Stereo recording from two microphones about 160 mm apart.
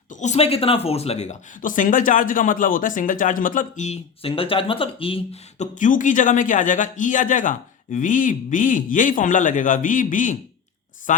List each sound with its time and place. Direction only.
0.1 s speech: 45° left (ahead or behind)